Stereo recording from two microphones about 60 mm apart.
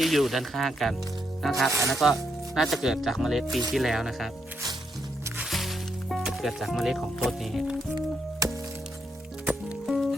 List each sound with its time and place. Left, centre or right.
0.0 s speech: centre
5.5 s music: centre
6.3 s speech: centre
8.4 s music: right
9.8 s music: centre